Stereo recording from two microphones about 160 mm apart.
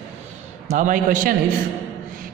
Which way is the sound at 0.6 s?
55° right (ahead or behind).